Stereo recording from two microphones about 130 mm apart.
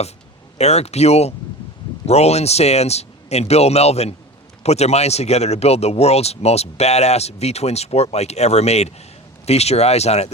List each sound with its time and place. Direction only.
0.6 s speech: 55° left (ahead or behind)